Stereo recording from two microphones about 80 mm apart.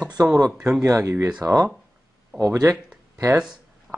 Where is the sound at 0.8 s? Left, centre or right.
Right.